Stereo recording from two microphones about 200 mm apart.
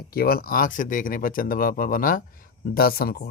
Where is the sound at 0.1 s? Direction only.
45° left (ahead or behind).